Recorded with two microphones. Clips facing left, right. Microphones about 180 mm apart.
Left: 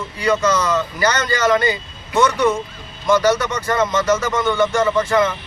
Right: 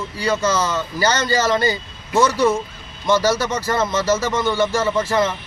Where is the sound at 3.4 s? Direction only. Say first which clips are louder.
Left 1 dB; 30° right (ahead or behind).